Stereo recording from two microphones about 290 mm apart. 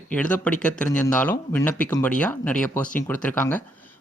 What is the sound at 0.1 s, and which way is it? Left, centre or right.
Speech, centre.